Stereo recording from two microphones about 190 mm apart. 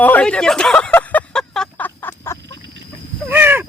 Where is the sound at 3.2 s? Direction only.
10° right (ahead or behind).